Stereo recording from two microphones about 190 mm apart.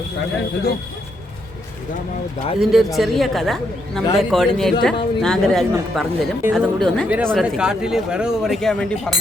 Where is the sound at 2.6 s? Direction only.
Centre (ahead or behind).